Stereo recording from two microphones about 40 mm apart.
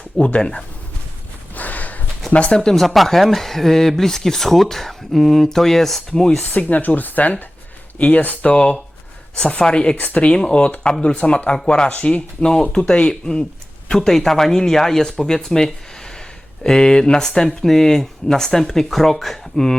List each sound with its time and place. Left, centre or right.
0.2 s speech: left
1.5 s a sound: left
2.3 s speech: left
2.6 s speech: centre
6.4 s speech: left
10.0 s speech: left
10.2 s speech: left; by 19.7 s centre